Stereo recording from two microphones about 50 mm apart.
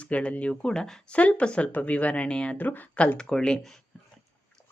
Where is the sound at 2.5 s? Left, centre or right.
Left.